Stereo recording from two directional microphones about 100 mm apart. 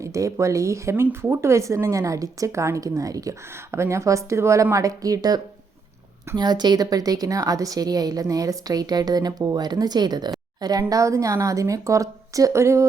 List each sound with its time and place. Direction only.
0.0 s speech: 30° right (ahead or behind)